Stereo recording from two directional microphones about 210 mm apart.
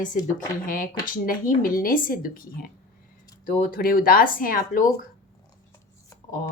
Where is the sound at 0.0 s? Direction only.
40° left (ahead or behind).